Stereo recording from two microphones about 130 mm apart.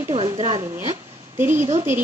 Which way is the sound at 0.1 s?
55° right (ahead or behind).